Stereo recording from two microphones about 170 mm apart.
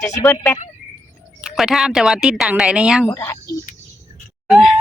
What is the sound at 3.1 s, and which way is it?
Speech, 15° left (ahead or behind).